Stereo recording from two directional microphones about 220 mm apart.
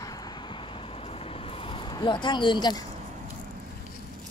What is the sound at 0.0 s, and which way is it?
Vehicle, 15° left (ahead or behind).